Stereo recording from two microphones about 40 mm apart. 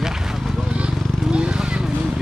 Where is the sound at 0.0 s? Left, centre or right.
Centre.